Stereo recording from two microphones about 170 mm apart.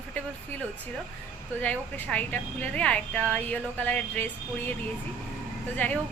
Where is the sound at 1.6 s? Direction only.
10° left (ahead or behind).